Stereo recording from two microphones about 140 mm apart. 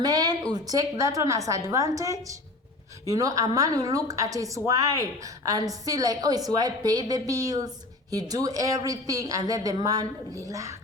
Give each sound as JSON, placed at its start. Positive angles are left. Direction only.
{"t": 0.0, "sound": "speech", "side_deg": -30}